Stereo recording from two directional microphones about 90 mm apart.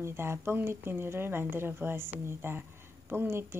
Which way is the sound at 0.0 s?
30° right (ahead or behind).